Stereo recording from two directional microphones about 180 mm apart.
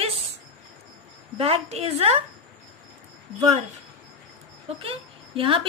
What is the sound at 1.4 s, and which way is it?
Speech, 30° right (ahead or behind).